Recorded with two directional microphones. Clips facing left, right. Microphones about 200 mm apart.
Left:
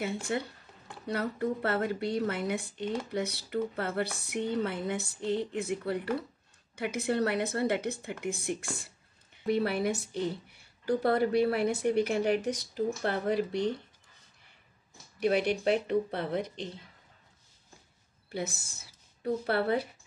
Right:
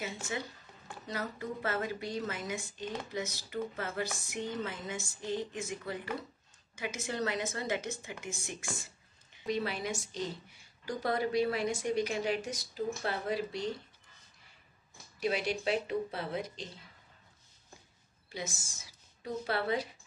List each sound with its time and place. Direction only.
0.0 s a woman's voice: 60° left (ahead or behind)
15.1 s a woman's voice: 60° left (ahead or behind)
18.3 s speech: 60° left (ahead or behind)